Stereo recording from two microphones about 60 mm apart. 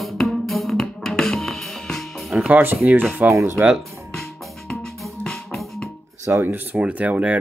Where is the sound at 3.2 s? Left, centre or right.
Right.